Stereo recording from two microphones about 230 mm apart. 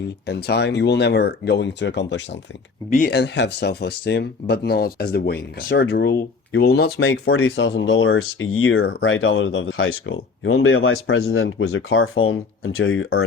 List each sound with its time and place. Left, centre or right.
0.3 s speech: left
7.1 s speech: left
8.8 s speech: left
9.0 s speech: left